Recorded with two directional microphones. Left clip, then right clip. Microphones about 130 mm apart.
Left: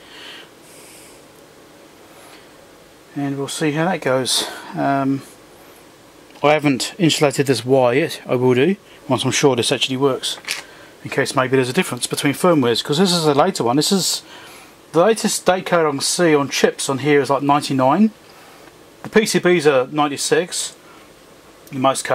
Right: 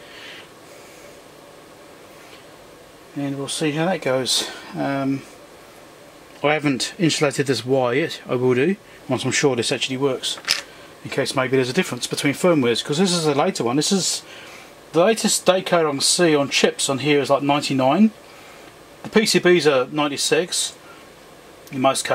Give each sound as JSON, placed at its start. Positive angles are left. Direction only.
{"t": 3.2, "sound": "speech", "side_deg": 25}
{"t": 6.4, "sound": "speech", "side_deg": 25}
{"t": 19.3, "sound": "speech", "side_deg": 20}
{"t": 21.8, "sound": "speech", "side_deg": 20}